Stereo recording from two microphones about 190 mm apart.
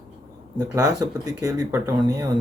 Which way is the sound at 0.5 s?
20° right (ahead or behind).